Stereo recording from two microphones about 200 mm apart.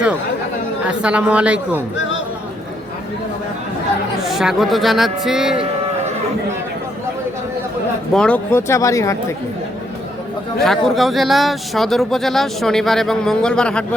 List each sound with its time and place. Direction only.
0.9 s speech: 5° right (ahead or behind)
2.0 s music: 70° left (ahead or behind)
4.2 s speech: centre (ahead or behind)
8.1 s speech: 5° left (ahead or behind)
10.6 s speech: centre (ahead or behind)